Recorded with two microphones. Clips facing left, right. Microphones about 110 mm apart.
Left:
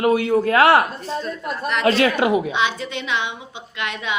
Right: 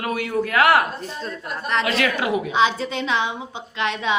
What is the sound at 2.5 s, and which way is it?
A woman's voice, 35° right (ahead or behind).